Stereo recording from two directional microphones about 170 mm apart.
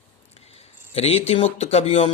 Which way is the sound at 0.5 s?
35° left (ahead or behind).